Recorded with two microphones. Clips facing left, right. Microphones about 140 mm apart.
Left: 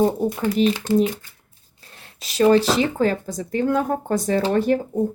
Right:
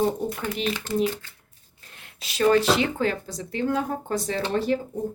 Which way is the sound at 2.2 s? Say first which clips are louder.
Left 4 dB; 35° left (ahead or behind).